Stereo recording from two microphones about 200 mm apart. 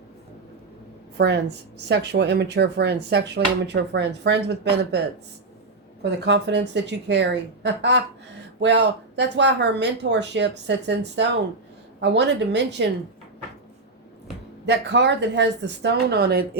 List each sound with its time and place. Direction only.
1.2 s speech: 60° right (ahead or behind)
6.0 s speech: 60° right (ahead or behind)
14.7 s speech: 60° right (ahead or behind)